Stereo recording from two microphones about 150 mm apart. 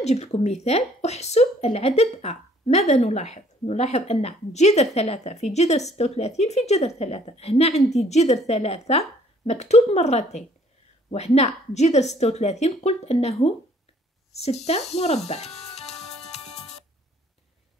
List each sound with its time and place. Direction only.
0.0 s a woman's voice: 45° left (ahead or behind)
16.3 s music: 45° left (ahead or behind)